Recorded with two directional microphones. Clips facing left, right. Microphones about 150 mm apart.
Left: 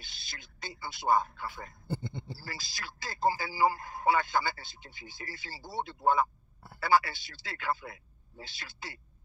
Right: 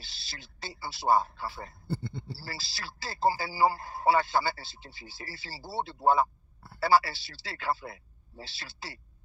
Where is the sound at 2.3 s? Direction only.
30° right (ahead or behind).